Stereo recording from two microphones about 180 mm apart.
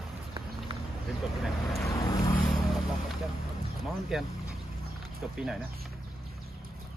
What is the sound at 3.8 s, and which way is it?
Speech, centre (ahead or behind).